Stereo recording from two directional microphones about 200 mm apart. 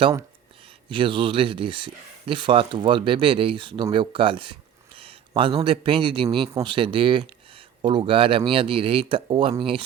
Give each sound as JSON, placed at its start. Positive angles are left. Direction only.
{"t": 0.9, "sound": "speech", "side_deg": -25}